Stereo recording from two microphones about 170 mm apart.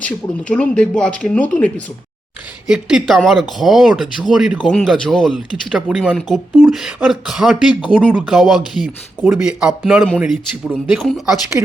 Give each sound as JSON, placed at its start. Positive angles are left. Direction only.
{"t": 0.0, "sound": "speech", "side_deg": 5}
{"t": 2.6, "sound": "a man's voice", "side_deg": -5}
{"t": 11.6, "sound": "speech", "side_deg": -15}